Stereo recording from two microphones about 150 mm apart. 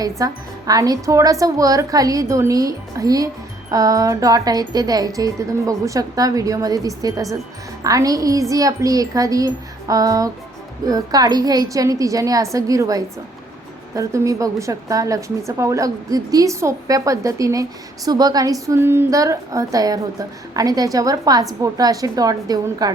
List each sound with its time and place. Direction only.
0.0 s a woman's voice: 25° right (ahead or behind)